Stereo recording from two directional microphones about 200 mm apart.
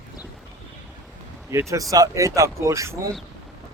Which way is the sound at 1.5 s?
15° right (ahead or behind).